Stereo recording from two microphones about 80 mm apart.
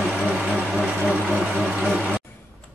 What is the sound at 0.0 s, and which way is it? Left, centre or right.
Vehicle, centre.